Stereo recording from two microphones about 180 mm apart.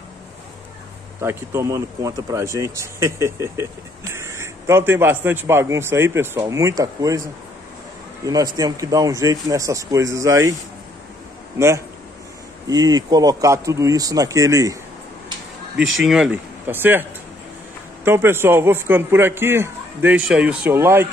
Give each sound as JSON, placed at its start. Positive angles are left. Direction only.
{"t": 1.2, "sound": "speech", "side_deg": -15}
{"t": 8.3, "sound": "speech", "side_deg": -20}
{"t": 11.5, "sound": "speech", "side_deg": -15}
{"t": 16.0, "sound": "speech", "side_deg": -5}
{"t": 18.0, "sound": "speech", "side_deg": -15}